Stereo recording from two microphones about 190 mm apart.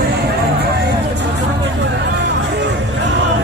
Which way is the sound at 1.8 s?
65° right (ahead or behind).